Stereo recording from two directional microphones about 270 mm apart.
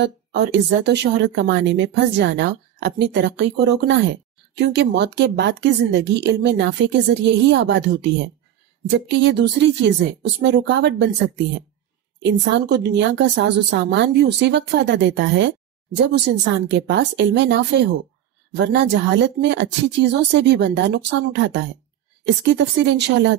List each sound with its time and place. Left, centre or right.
0.0 s a woman's voice: right
9.1 s a woman's voice: right
16.7 s a woman's voice: right